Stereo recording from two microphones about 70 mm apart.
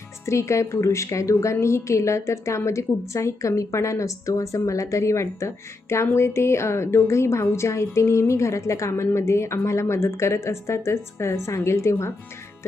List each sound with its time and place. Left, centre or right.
0.3 s a woman's voice: left